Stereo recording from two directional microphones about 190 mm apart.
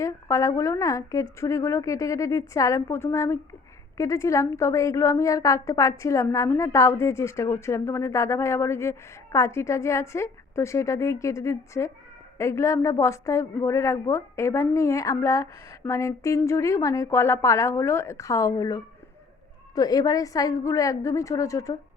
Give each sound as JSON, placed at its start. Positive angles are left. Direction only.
{"t": 0.0, "sound": "a woman's voice", "side_deg": 15}